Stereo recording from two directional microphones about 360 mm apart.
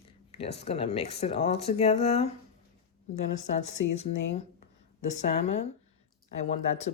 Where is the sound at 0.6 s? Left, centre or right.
Centre.